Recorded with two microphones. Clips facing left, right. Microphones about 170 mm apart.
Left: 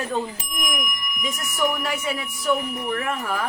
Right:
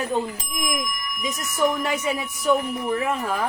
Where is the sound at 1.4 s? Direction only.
20° right (ahead or behind).